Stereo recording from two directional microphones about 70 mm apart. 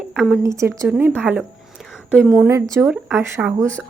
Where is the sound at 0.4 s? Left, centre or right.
Right.